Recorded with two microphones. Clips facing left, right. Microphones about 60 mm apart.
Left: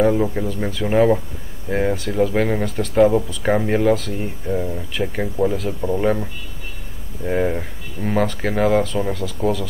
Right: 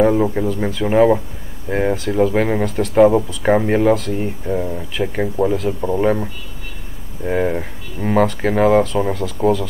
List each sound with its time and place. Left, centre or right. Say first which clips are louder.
0.0 s speech: right 3 dB; centre
6.0 s speech: right 2 dB; centre